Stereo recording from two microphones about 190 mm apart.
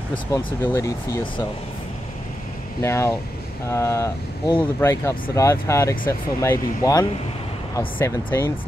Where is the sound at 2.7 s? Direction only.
15° left (ahead or behind).